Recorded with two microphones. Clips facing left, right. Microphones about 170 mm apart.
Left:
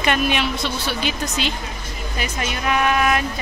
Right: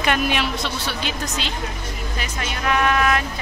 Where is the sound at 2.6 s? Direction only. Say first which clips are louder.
Even; 10° left (ahead or behind).